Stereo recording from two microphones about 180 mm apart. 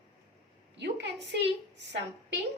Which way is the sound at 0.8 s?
70° right (ahead or behind).